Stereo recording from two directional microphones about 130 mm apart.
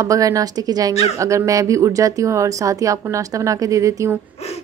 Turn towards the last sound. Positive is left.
turn(degrees=-25)  # may be behind; listen again after turning